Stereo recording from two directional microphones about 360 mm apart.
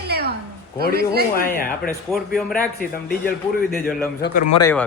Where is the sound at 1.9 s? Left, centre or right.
Centre.